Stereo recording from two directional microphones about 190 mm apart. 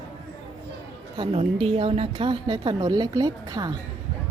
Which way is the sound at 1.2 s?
30° right (ahead or behind).